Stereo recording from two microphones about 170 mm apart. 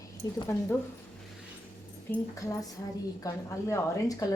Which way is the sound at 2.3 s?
20° left (ahead or behind).